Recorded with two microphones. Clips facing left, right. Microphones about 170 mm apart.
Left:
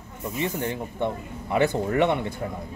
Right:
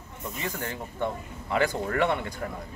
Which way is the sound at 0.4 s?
25° left (ahead or behind).